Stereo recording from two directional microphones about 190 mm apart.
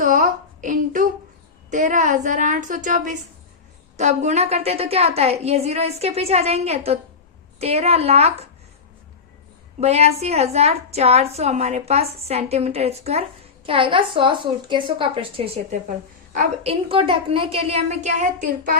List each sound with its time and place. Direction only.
0.0 s a sound: 45° right (ahead or behind)
1.7 s a woman's voice: 40° right (ahead or behind)
9.8 s a woman's voice: 35° right (ahead or behind)